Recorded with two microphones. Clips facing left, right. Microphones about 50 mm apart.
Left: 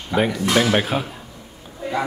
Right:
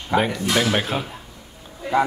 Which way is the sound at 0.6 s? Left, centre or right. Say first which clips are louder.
Left 3 dB; centre.